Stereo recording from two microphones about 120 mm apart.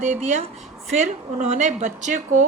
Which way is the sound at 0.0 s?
75° right (ahead or behind).